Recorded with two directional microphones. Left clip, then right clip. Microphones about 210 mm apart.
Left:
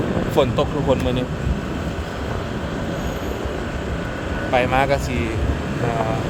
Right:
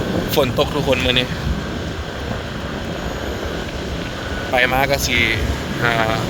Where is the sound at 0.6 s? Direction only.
20° right (ahead or behind).